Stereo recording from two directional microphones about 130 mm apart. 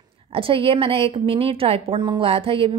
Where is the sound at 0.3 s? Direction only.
45° right (ahead or behind).